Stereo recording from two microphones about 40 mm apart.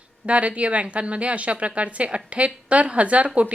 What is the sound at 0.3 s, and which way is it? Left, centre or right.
A woman's voice, right.